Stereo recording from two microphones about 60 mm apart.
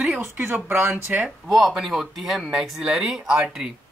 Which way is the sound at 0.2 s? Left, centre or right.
Right.